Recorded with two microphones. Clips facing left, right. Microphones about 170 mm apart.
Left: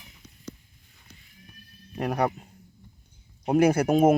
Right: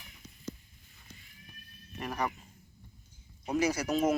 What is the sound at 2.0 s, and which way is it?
Speech, 70° left (ahead or behind).